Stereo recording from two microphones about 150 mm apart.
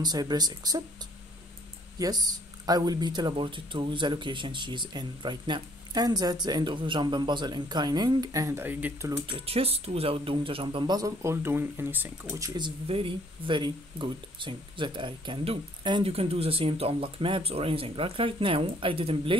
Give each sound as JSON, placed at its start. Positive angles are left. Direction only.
{"t": 0.0, "sound": "speech", "side_deg": -25}
{"t": 2.0, "sound": "speech", "side_deg": -25}
{"t": 9.2, "sound": "speech", "side_deg": -40}
{"t": 12.4, "sound": "speech", "side_deg": -25}